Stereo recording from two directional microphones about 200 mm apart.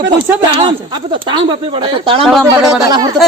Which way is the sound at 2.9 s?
20° right (ahead or behind).